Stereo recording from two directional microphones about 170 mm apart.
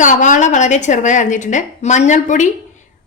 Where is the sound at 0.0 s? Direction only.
50° left (ahead or behind).